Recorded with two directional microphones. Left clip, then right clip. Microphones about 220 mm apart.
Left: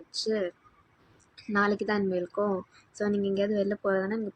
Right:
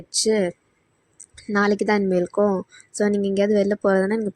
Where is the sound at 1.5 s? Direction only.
35° right (ahead or behind).